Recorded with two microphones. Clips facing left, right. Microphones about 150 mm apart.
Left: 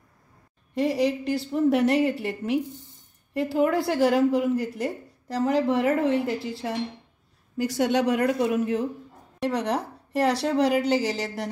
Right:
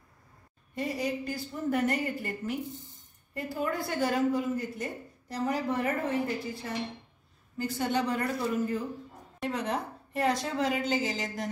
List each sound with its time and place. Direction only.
0.7 s a woman's voice: 90° left; by 11.4 s 70° left (ahead or behind)